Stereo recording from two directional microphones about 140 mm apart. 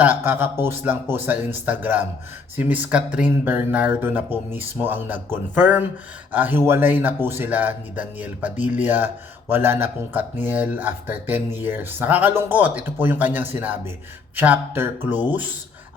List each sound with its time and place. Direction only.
0.0 s speech: 15° right (ahead or behind)